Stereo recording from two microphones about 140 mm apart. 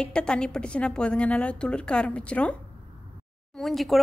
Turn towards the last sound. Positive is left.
turn(degrees=0)  # may be behind; listen again after turning